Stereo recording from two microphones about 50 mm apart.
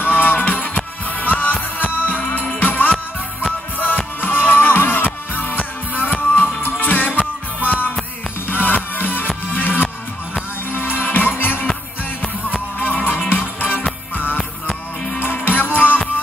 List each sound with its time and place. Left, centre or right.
0.0 s music: left
12.7 s music: left